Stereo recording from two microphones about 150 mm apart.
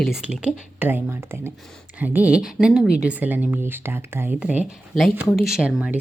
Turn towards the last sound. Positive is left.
turn(degrees=-5)  # may be behind; listen again after turning